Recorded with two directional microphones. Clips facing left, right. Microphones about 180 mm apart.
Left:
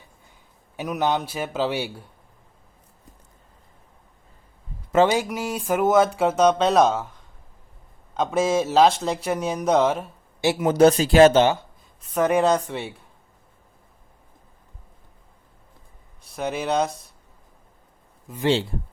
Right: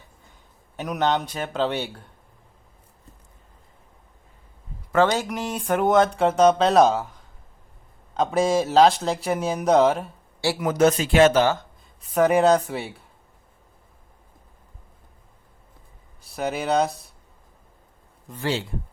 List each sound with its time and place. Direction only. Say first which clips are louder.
0.8 s speech: even; 5° left (ahead or behind)
5.0 s speech: left 2 dB; 5° left (ahead or behind)
8.1 s speech: right 1 dB; centre (ahead or behind)
10.4 s speech: left 3 dB; 20° left (ahead or behind)
12.0 s speech: right 2 dB; centre (ahead or behind)
16.2 s speech: even; centre (ahead or behind)
18.3 s speech: left 2 dB; 5° left (ahead or behind)